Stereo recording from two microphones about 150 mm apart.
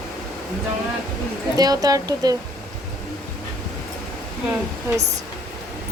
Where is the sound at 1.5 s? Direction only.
25° right (ahead or behind).